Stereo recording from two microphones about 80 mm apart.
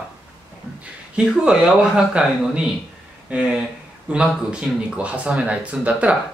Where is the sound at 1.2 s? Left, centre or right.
Centre.